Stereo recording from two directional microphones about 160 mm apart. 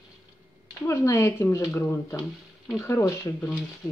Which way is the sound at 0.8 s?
20° left (ahead or behind).